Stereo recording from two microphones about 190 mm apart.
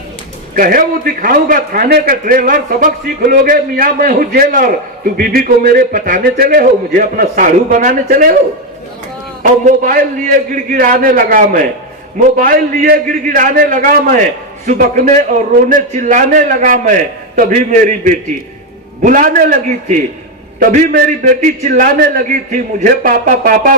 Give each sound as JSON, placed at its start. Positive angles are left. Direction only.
{"t": 0.5, "sound": "a man's voice", "side_deg": -50}
{"t": 9.6, "sound": "a man's voice", "side_deg": -45}